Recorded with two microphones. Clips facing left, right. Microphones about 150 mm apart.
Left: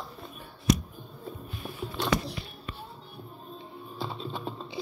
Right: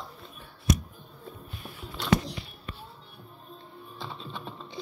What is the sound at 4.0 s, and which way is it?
Music, 35° left (ahead or behind).